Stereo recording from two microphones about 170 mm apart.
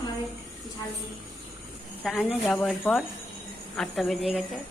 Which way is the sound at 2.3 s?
Centre (ahead or behind).